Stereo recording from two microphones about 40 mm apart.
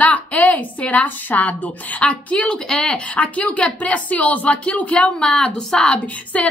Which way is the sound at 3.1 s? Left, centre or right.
Left.